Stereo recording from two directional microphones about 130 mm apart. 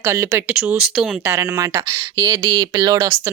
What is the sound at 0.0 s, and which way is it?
Speech, 20° right (ahead or behind).